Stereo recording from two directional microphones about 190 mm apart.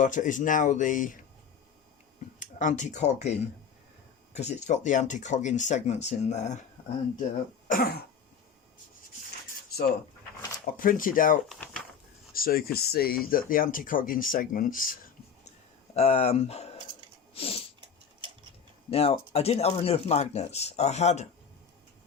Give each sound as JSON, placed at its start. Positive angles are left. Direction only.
{"t": 0.0, "sound": "speech", "side_deg": 40}
{"t": 2.4, "sound": "speech", "side_deg": 40}
{"t": 7.7, "sound": "speech", "side_deg": 55}
{"t": 10.8, "sound": "speech", "side_deg": 45}
{"t": 11.4, "sound": "a sound", "side_deg": 5}
{"t": 12.3, "sound": "speech", "side_deg": 50}
{"t": 16.0, "sound": "speech", "side_deg": 35}
{"t": 17.3, "sound": "a sound", "side_deg": 30}
{"t": 18.9, "sound": "speech", "side_deg": 30}